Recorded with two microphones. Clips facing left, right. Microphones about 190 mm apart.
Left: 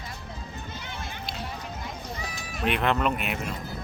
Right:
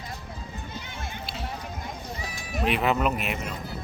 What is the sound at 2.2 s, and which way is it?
Speech, 5° right (ahead or behind).